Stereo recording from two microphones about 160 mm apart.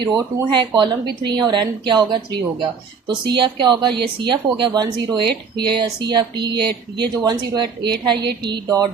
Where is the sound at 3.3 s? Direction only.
30° right (ahead or behind).